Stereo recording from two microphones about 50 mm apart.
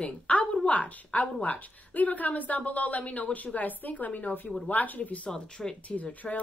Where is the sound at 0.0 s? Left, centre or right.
Left.